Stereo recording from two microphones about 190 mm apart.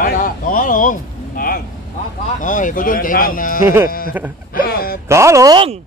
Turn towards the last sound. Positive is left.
turn(degrees=-25)  # may be behind; listen again after turning